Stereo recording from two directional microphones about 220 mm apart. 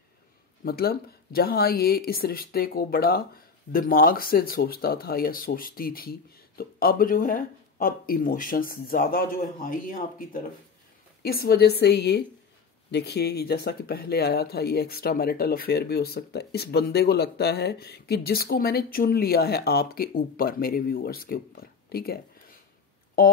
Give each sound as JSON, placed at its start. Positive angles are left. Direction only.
{"t": 0.7, "sound": "speech", "side_deg": 45}